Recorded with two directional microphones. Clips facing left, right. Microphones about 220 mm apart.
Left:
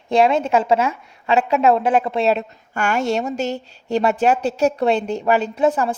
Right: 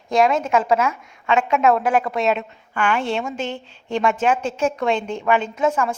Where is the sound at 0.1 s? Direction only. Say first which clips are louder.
Left 2 dB; 30° left (ahead or behind).